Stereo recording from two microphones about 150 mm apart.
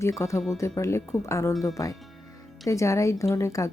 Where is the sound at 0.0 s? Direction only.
20° left (ahead or behind).